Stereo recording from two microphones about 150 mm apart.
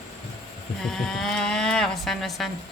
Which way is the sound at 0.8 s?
5° left (ahead or behind).